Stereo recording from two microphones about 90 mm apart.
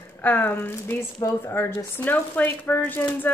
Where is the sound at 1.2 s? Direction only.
35° left (ahead or behind).